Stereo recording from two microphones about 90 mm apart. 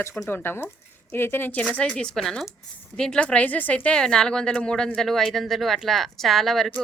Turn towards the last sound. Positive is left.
turn(degrees=0)  # may be behind; listen again after turning